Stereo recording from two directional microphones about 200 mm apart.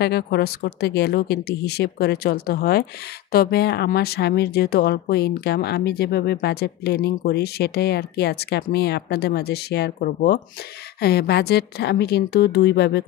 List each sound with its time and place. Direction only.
0.0 s a woman's voice: 55° left (ahead or behind)